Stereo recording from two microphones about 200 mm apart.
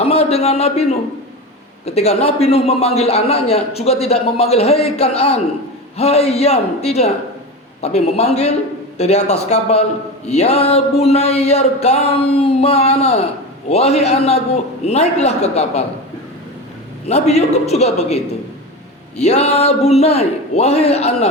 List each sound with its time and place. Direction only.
0.0 s a man's voice: 30° left (ahead or behind)
17.1 s a man's voice: 35° left (ahead or behind)